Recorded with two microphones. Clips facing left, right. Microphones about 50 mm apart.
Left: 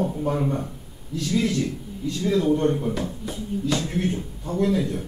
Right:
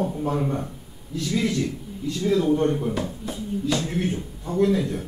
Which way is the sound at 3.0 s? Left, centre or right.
Centre.